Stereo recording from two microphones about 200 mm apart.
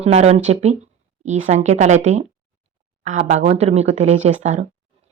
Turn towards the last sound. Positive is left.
turn(degrees=-35)  # may be behind; listen again after turning